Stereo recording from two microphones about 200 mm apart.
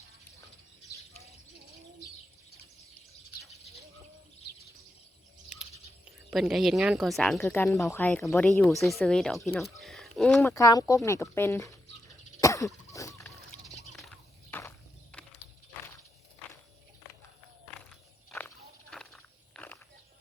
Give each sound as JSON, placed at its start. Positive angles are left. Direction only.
{"t": 6.5, "sound": "speech", "side_deg": 0}
{"t": 9.6, "sound": "a sound", "side_deg": 0}
{"t": 10.4, "sound": "speech", "side_deg": 15}
{"t": 12.4, "sound": "cough", "side_deg": 15}
{"t": 13.9, "sound": "a sound", "side_deg": 0}
{"t": 15.1, "sound": "horse", "side_deg": 5}
{"t": 18.3, "sound": "walk", "side_deg": 5}